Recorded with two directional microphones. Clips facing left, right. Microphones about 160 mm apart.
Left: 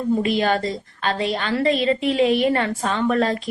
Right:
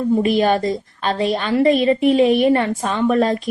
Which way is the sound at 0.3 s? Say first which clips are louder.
Right 4 dB; 20° right (ahead or behind).